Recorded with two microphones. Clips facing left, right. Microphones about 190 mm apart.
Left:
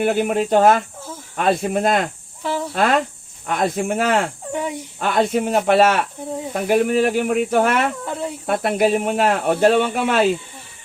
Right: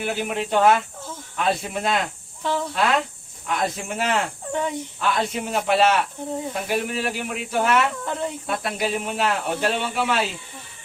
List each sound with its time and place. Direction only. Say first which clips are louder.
0.0 s speech: left 8 dB; 55° left (ahead or behind)
2.4 s speech: left 1 dB; 10° left (ahead or behind)
2.7 s speech: left 7 dB; 50° left (ahead or behind)
8.0 s speech: left 1 dB; 10° left (ahead or behind)
8.4 s speech: left 11 dB; 55° left (ahead or behind)